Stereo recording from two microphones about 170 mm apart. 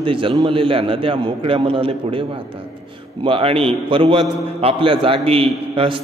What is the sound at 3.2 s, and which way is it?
A man's voice, 35° right (ahead or behind).